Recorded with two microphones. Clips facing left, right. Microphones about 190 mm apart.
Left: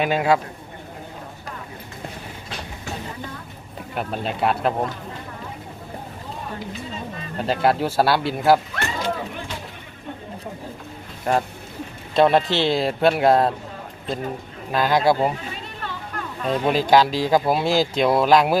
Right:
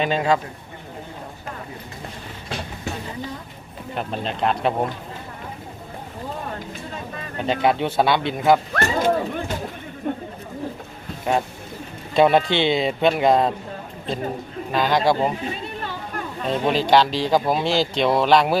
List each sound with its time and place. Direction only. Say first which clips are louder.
0.0 s speech: left 1 dB; 10° left (ahead or behind)
3.9 s speech: left 1 dB; 5° left (ahead or behind)
7.3 s speech: even; centre (ahead or behind)
8.7 s a sound: right 6 dB; 50° right (ahead or behind)
10.0 s chatter: right 9 dB; 55° right (ahead or behind)
11.3 s speech: even; centre (ahead or behind)
14.7 s speech: left 1 dB; 5° left (ahead or behind)
16.5 s speech: left 1 dB; 5° left (ahead or behind)